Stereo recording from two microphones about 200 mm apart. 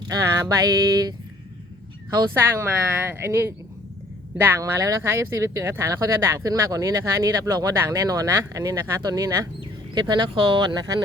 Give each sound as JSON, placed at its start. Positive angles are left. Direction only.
{"t": 0.1, "sound": "speech", "side_deg": -15}
{"t": 2.1, "sound": "speech", "side_deg": -10}